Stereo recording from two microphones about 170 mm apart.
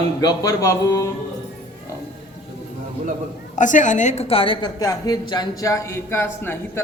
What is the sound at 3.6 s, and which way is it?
A woman's voice, 50° left (ahead or behind).